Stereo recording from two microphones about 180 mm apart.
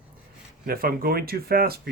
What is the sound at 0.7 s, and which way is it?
Speech, 55° right (ahead or behind).